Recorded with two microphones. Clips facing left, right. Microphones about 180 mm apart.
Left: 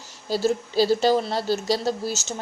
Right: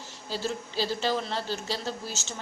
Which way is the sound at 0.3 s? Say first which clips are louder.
Left 9 dB; 40° left (ahead or behind).